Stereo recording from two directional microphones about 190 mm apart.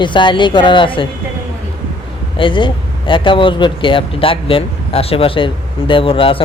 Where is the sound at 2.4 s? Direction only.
25° left (ahead or behind).